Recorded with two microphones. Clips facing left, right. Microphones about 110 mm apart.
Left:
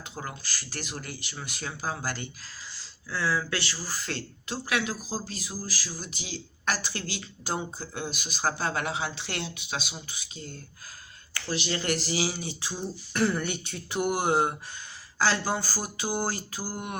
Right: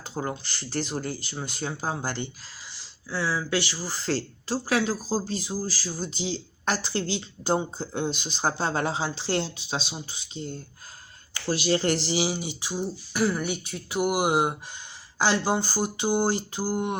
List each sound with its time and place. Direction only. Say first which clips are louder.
0.0 s speech: right 7 dB; 30° right (ahead or behind)
11.4 s speech: right 6 dB; 35° right (ahead or behind)